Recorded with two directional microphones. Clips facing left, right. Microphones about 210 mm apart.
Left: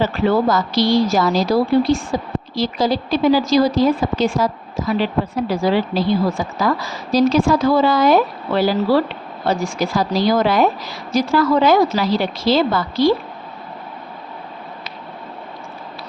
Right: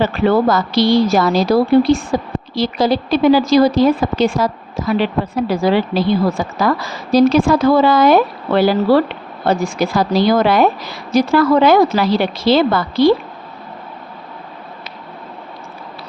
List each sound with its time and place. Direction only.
0.0 s a woman's voice: 60° right (ahead or behind)
5.5 s a woman's voice: 65° right (ahead or behind)